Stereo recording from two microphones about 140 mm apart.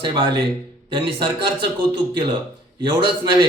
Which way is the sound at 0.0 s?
35° right (ahead or behind).